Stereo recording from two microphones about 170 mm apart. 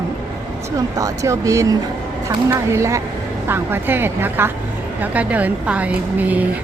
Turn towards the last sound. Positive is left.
turn(degrees=-10)  # may be behind; listen again after turning